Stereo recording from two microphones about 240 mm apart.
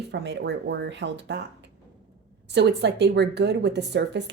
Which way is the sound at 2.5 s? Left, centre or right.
Right.